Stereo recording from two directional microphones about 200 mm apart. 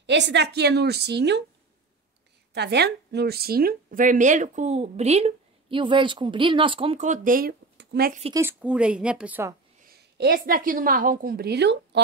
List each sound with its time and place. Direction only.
0.0 s a woman's voice: 60° right (ahead or behind)
2.5 s speech: 55° right (ahead or behind)
8.3 s a woman's voice: 10° right (ahead or behind)
9.8 s a woman's voice: 55° right (ahead or behind)